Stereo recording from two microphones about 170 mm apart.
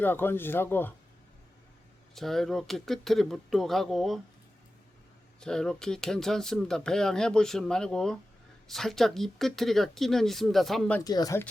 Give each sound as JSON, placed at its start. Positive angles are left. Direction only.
{"t": 0.0, "sound": "speech", "side_deg": 10}
{"t": 2.1, "sound": "speech", "side_deg": 0}
{"t": 5.4, "sound": "speech", "side_deg": 5}
{"t": 11.0, "sound": "speech", "side_deg": 20}